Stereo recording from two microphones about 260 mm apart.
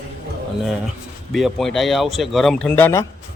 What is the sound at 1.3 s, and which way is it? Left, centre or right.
A man's voice, centre.